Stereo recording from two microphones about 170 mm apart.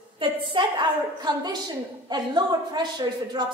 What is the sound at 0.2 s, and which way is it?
A woman's voice, 30° right (ahead or behind).